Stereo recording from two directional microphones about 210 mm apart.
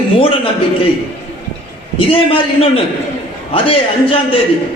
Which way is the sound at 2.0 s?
25° left (ahead or behind).